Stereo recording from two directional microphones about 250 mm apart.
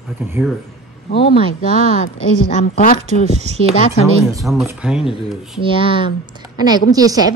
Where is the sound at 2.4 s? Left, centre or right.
Left.